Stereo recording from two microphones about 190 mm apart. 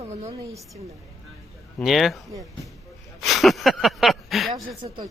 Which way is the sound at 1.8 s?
Centre (ahead or behind).